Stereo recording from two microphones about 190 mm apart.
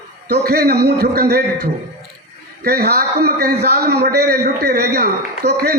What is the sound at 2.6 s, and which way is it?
A man's voice, 55° right (ahead or behind).